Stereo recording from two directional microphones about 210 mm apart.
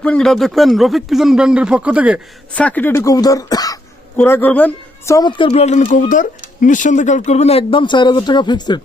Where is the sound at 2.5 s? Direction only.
5° left (ahead or behind).